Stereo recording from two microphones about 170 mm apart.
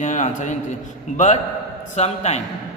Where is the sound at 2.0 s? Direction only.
40° left (ahead or behind).